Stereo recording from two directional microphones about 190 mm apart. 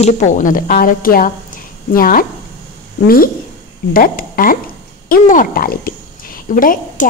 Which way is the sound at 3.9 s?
50° left (ahead or behind).